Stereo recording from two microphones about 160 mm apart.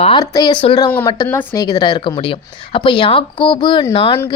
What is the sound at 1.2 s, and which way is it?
Speech, 15° left (ahead or behind).